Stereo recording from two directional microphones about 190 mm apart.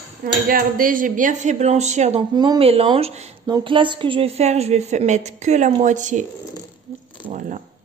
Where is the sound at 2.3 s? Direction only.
20° right (ahead or behind); by 6.3 s 40° right (ahead or behind).